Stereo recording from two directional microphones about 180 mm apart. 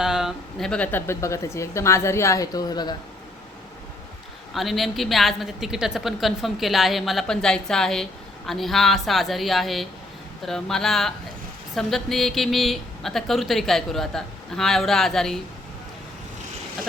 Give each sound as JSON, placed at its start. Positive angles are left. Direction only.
{"t": 0.0, "sound": "a woman's voice", "side_deg": 0}
{"t": 4.5, "sound": "speech", "side_deg": 0}